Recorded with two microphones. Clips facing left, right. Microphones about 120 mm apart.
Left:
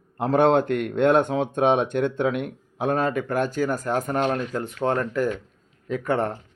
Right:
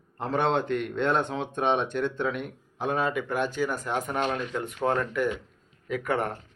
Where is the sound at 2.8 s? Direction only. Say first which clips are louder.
Left 4 dB; 45° left (ahead or behind); by 6.3 s 30° left (ahead or behind).